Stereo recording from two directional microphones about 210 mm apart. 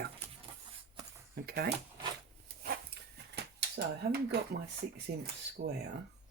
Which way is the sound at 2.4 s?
50° right (ahead or behind).